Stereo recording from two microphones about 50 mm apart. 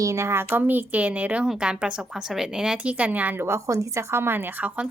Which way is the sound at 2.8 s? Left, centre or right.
Right.